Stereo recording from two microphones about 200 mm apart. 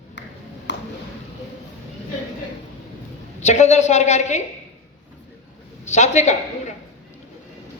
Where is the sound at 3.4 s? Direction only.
35° left (ahead or behind).